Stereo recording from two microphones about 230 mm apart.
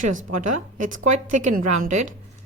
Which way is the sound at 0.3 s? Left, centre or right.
Right.